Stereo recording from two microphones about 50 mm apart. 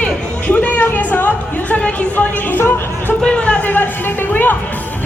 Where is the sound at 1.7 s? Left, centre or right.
Left.